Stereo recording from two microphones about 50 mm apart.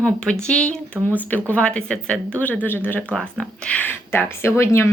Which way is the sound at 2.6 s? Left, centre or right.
Left.